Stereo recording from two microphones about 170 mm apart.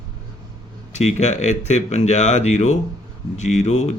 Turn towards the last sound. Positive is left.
turn(degrees=40)  # may be behind; listen again after turning